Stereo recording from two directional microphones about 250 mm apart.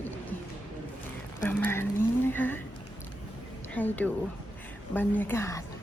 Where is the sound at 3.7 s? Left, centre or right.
Centre.